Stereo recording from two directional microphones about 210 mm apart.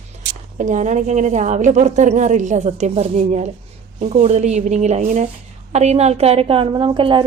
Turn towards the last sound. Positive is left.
turn(degrees=-25)  # may be behind; listen again after turning